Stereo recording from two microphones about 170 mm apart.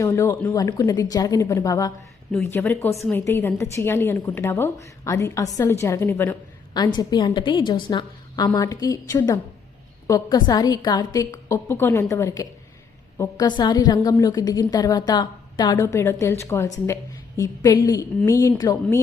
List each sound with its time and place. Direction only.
0.0 s a woman's voice: 15° left (ahead or behind)
6.7 s a woman's voice: 25° left (ahead or behind)